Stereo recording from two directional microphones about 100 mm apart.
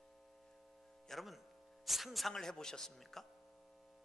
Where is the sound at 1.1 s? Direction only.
Centre (ahead or behind).